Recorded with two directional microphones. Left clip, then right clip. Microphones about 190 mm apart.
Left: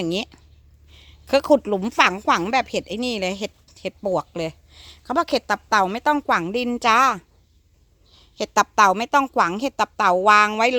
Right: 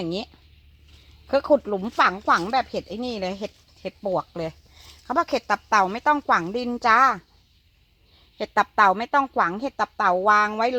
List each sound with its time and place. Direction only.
0.0 s speech: 30° left (ahead or behind)
8.4 s speech: 30° left (ahead or behind)